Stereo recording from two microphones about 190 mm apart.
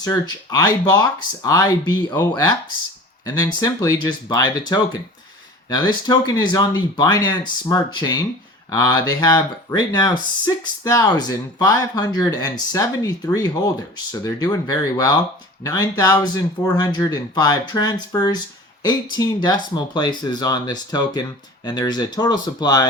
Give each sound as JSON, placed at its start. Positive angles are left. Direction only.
{"t": 0.0, "sound": "speech", "side_deg": 20}